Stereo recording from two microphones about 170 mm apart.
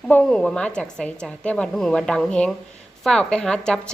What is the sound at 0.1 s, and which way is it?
A woman's voice, 5° left (ahead or behind).